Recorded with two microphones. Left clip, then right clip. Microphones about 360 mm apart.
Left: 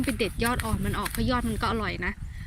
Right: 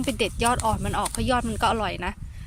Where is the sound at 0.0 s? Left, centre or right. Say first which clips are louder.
Right 4 dB; centre.